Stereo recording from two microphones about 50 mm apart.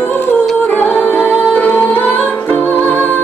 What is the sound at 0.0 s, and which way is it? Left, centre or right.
Music, left.